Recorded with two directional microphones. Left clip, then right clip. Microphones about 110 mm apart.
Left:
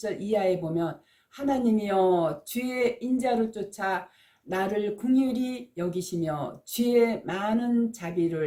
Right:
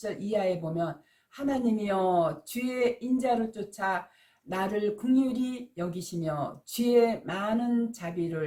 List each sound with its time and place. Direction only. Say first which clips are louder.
0.0 s speech: left 3 dB; 20° left (ahead or behind)